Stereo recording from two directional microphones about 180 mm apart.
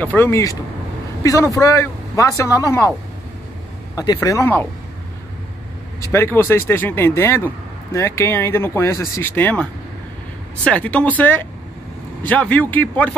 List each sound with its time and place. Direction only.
0.0 s speech: 10° left (ahead or behind)
3.9 s speech: 20° left (ahead or behind)
5.9 s speech: 15° left (ahead or behind)